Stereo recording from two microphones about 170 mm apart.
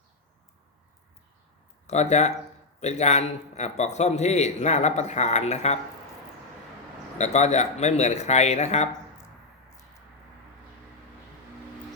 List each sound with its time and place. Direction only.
1.9 s a man's voice: 40° left (ahead or behind)
7.2 s a man's voice: 40° left (ahead or behind)